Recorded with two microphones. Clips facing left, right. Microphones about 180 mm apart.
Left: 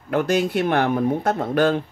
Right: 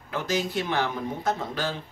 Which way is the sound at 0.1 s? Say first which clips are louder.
Left 8 dB; 60° left (ahead or behind).